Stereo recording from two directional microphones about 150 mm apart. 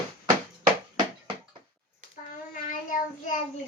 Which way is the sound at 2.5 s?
60° left (ahead or behind).